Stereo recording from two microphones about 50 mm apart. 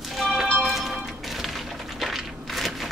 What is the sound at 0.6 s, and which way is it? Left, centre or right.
Music, centre.